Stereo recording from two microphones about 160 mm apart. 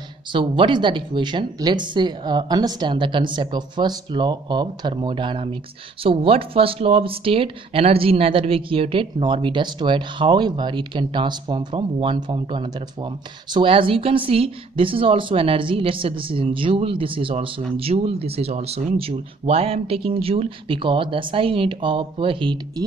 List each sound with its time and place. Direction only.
0.3 s speech: 30° right (ahead or behind)